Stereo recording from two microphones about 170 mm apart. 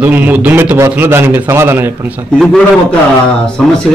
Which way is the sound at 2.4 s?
Centre (ahead or behind).